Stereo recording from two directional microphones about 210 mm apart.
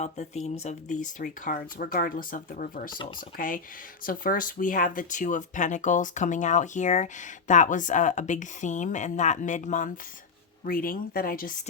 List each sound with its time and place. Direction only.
0.0 s speech: 30° left (ahead or behind)
2.9 s speech: 20° left (ahead or behind)
3.3 s speech: 40° left (ahead or behind)